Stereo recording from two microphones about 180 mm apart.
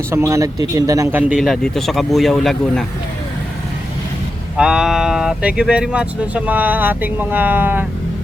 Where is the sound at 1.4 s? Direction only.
Centre (ahead or behind).